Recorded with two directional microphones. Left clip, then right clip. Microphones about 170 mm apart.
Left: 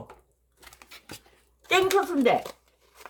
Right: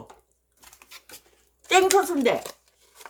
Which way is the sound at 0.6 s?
55° left (ahead or behind).